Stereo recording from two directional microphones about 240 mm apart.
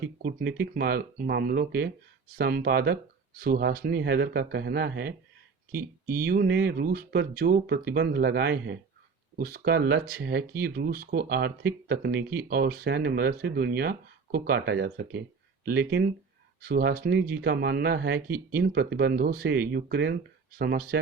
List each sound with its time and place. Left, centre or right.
0.2 s speech: right